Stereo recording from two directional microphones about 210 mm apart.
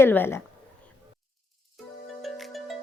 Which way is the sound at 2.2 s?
Centre (ahead or behind).